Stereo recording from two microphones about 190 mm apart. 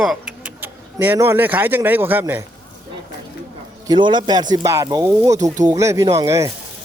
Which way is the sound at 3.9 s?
25° right (ahead or behind).